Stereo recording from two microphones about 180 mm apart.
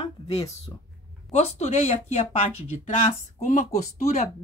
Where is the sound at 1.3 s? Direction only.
35° left (ahead or behind).